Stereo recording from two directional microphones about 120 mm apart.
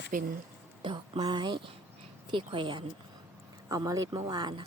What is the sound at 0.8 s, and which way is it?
Speech, 40° right (ahead or behind).